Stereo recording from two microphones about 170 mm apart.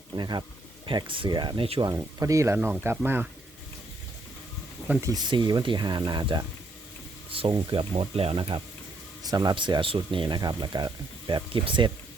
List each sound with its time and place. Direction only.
0.2 s speech: 25° right (ahead or behind)
1.9 s speech: 20° right (ahead or behind)
4.9 s speech: 15° right (ahead or behind)